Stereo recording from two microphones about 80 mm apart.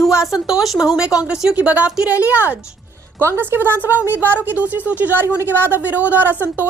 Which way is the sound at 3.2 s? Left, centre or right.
Right.